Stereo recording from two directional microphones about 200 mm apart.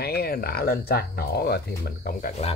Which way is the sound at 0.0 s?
50° left (ahead or behind).